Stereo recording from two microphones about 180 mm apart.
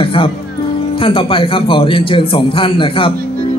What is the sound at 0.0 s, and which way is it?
A man's voice, 30° left (ahead or behind).